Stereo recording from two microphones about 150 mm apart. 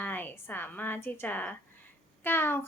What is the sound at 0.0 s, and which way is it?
A woman's voice, 10° left (ahead or behind).